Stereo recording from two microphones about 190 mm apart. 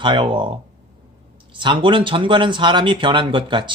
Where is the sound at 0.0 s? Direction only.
25° right (ahead or behind).